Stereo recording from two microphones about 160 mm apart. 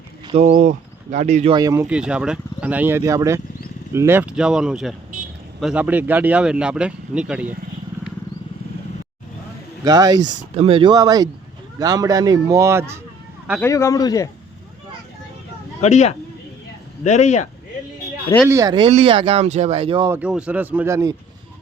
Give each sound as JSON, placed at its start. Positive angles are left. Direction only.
{"t": 0.3, "sound": "speech", "side_deg": -40}
{"t": 1.5, "sound": "speech", "side_deg": -20}
{"t": 1.9, "sound": "speech", "side_deg": -5}
{"t": 9.8, "sound": "speech", "side_deg": -25}
{"t": 10.5, "sound": "speech", "side_deg": -35}
{"t": 13.6, "sound": "a man's voice", "side_deg": 20}
{"t": 15.8, "sound": "speech", "side_deg": 45}
{"t": 18.4, "sound": "speech", "side_deg": -15}
{"t": 18.7, "sound": "speech", "side_deg": -35}
{"t": 20.1, "sound": "speech", "side_deg": -10}